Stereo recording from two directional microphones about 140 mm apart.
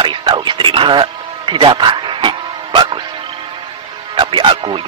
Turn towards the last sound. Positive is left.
turn(degrees=-35)  # may be behind; listen again after turning